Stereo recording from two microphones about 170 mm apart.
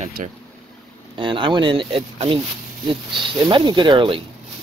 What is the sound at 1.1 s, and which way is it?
Speech, 30° right (ahead or behind).